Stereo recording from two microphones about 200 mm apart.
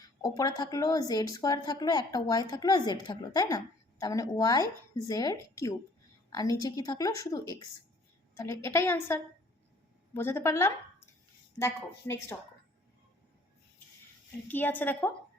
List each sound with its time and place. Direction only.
0.2 s a woman's voice: 20° left (ahead or behind)
14.4 s a woman's voice: 10° left (ahead or behind)